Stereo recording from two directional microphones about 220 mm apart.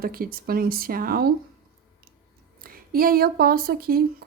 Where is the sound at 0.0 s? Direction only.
40° right (ahead or behind).